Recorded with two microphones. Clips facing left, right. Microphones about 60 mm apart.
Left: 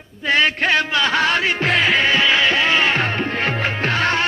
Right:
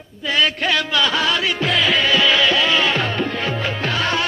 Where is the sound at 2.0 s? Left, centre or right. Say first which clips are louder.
Even; left.